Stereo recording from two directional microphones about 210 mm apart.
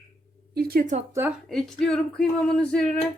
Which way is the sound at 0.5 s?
45° right (ahead or behind).